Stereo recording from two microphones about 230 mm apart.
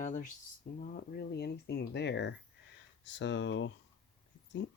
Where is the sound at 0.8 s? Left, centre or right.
Left.